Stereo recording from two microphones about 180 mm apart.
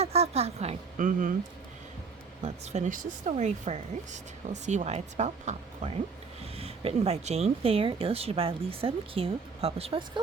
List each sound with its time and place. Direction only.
0.0 s a woman's voice: 35° right (ahead or behind)
2.4 s speech: 40° right (ahead or behind)